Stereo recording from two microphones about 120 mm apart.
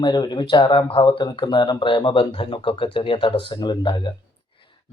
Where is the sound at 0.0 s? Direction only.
40° left (ahead or behind).